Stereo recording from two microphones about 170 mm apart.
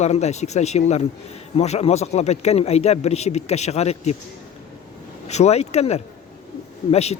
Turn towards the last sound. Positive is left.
turn(degrees=40)  # may be behind; listen again after turning